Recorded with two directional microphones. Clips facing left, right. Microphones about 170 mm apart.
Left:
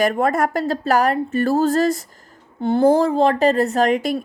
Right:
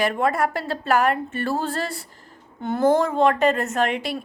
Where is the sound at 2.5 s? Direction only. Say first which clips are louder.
Left 4 dB; 30° left (ahead or behind).